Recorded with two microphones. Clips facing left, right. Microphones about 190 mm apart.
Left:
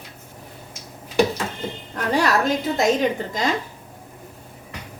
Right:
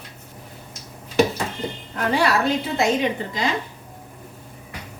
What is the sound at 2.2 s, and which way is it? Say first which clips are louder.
A woman's voice: even; 40° left (ahead or behind).